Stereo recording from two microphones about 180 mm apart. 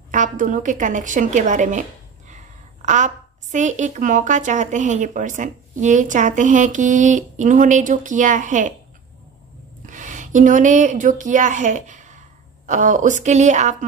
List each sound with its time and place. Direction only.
0.1 s a woman's voice: 45° right (ahead or behind)
9.8 s speech: 45° right (ahead or behind)